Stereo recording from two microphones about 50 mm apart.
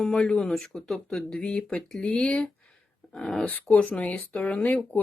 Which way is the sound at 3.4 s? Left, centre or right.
Left.